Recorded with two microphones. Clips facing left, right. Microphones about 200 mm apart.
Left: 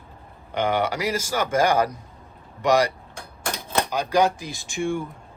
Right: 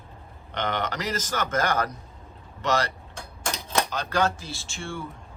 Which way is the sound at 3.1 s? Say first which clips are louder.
Left 2 dB; 55° left (ahead or behind).